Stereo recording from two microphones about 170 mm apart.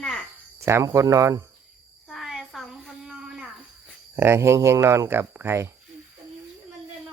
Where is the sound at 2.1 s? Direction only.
Centre (ahead or behind).